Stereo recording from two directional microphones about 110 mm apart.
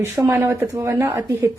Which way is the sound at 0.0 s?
20° right (ahead or behind).